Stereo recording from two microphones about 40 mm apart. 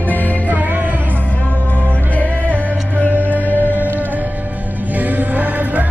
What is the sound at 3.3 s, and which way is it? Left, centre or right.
Music, left.